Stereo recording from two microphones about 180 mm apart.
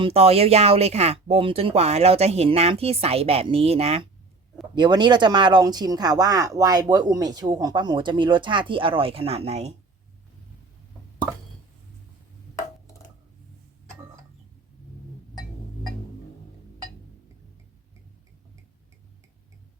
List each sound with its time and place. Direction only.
0.0 s speech: 35° right (ahead or behind)